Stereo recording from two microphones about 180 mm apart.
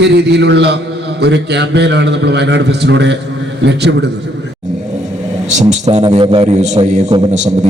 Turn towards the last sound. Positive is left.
turn(degrees=-40)  # may be behind; listen again after turning